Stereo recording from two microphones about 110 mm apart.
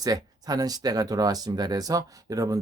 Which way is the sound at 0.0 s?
35° right (ahead or behind).